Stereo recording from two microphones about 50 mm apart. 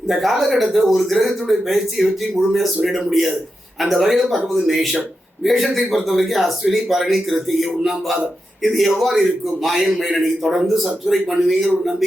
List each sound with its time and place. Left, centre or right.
0.1 s a man's voice: centre